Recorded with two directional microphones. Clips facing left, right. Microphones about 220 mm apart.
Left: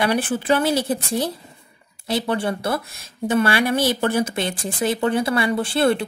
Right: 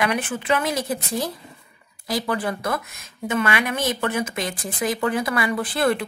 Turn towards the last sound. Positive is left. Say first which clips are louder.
# left 3 dB
turn(degrees=30)  # may be behind; listen again after turning